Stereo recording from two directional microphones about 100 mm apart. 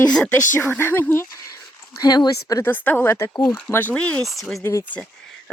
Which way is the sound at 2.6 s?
20° left (ahead or behind).